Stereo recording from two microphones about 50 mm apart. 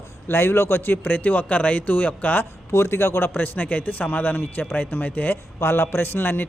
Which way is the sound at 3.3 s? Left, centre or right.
Left.